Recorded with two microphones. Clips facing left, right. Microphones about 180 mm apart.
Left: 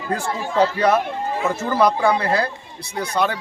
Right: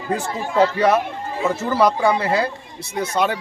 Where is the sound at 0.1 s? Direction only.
Centre (ahead or behind).